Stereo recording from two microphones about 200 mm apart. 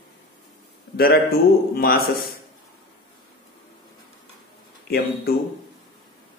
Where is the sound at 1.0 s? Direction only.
50° left (ahead or behind).